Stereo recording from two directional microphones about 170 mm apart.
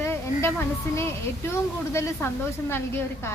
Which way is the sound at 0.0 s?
15° left (ahead or behind).